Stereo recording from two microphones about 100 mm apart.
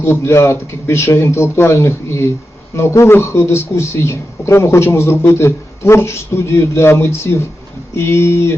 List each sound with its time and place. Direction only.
0.0 s speech: 25° left (ahead or behind)